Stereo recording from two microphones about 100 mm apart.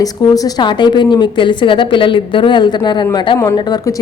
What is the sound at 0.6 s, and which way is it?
Speech, 50° left (ahead or behind).